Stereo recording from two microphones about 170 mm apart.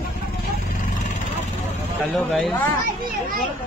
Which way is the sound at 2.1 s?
Centre (ahead or behind).